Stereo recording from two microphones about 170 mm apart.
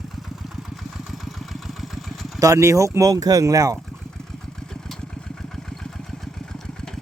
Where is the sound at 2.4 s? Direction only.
20° right (ahead or behind).